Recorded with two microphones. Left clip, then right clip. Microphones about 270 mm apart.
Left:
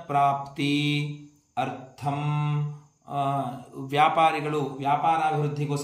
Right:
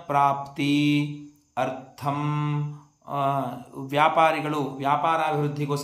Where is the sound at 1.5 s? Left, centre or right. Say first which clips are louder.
Right 2 dB; centre.